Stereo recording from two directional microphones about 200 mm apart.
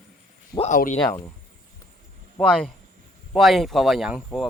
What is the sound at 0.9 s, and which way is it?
Speech, 10° left (ahead or behind).